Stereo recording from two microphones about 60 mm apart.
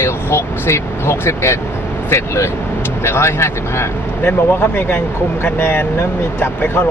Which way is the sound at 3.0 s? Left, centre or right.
Left.